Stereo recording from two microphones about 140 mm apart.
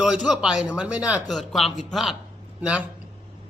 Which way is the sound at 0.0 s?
5° right (ahead or behind).